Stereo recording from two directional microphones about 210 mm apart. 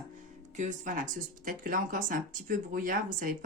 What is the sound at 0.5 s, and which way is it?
Speech, 35° right (ahead or behind).